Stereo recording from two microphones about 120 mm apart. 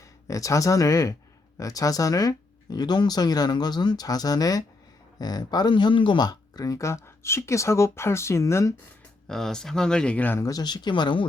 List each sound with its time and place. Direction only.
0.3 s speech: 25° left (ahead or behind)
9.2 s speech: 5° left (ahead or behind)
10.4 s speech: 35° left (ahead or behind)